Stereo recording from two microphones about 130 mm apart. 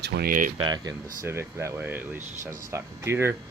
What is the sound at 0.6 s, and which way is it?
Speech, 35° right (ahead or behind).